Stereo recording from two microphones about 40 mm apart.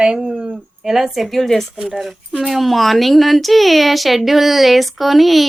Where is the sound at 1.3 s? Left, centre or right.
Centre.